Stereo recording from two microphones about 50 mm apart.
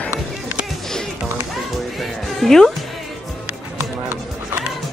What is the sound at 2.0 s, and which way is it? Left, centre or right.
Music, centre.